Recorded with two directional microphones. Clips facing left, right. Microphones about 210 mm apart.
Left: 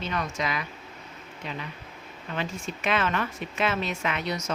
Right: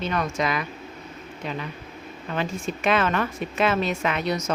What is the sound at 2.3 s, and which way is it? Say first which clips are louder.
Speech: right 5 dB; 45° right (ahead or behind).